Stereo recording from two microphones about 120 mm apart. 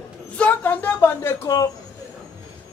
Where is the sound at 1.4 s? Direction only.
30° left (ahead or behind).